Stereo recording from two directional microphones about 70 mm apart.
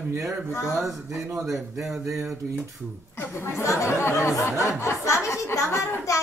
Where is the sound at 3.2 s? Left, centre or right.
Left.